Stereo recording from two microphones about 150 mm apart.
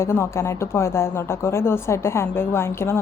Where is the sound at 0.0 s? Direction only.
15° left (ahead or behind).